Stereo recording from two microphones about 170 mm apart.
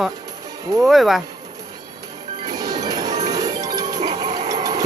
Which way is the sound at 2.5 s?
20° right (ahead or behind).